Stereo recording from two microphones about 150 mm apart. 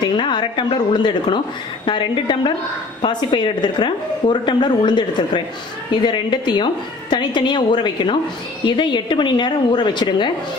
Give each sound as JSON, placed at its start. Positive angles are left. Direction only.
{"t": 0.0, "sound": "a woman's voice", "side_deg": 30}